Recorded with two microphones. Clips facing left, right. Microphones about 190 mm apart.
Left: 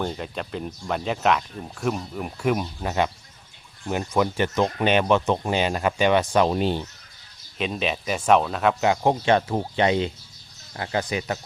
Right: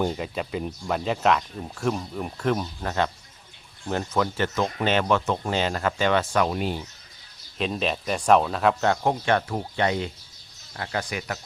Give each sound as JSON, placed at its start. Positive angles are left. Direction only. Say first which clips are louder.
{"t": 0.0, "sound": "speech", "louder": "right 2 dB", "side_deg": -5}
{"t": 7.6, "sound": "speech", "louder": "even", "side_deg": 0}
{"t": 8.8, "sound": "speech", "louder": "left 2 dB", "side_deg": 15}